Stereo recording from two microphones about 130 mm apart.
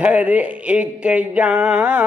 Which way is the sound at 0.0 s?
10° right (ahead or behind).